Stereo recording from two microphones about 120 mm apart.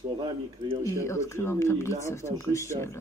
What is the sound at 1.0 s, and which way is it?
Speech, 25° left (ahead or behind).